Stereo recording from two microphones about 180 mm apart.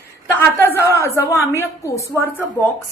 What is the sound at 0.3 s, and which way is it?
A woman's voice, 10° left (ahead or behind).